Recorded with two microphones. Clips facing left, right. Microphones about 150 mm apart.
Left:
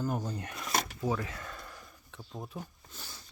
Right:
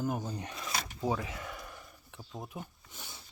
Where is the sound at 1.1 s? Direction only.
15° right (ahead or behind).